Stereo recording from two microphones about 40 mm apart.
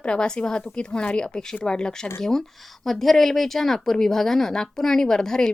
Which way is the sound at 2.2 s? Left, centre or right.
Centre.